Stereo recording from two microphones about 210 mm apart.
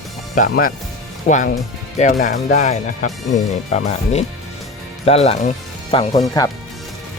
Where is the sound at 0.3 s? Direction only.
40° left (ahead or behind).